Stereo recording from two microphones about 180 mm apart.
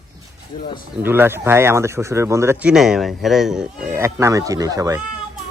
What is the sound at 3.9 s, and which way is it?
Speech, 15° right (ahead or behind).